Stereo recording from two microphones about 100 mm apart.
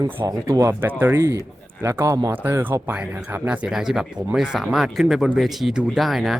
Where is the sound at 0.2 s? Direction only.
40° right (ahead or behind).